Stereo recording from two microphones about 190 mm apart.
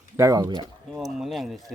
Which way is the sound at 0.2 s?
20° right (ahead or behind).